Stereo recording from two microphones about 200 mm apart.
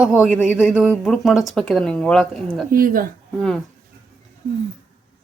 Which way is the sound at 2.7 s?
45° right (ahead or behind).